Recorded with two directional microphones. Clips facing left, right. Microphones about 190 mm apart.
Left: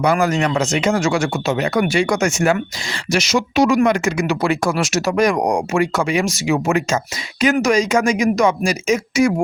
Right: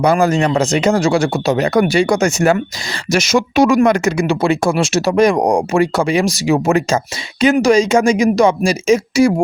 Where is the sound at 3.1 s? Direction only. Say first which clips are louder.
Right 4 dB; 50° right (ahead or behind).